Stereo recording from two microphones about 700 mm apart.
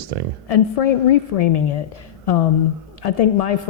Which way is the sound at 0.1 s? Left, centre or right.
Right.